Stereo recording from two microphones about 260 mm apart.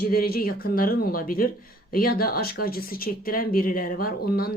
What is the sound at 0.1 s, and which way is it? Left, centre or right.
Speech, left.